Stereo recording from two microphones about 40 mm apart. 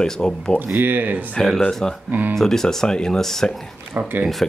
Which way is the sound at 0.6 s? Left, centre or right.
Right.